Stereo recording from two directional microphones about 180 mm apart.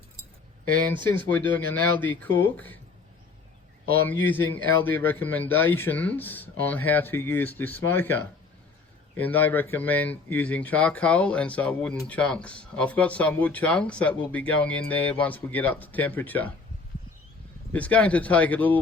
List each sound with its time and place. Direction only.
1.3 s speech: 10° left (ahead or behind)
4.2 s speech: 10° left (ahead or behind)
17.7 s speech: 10° left (ahead or behind)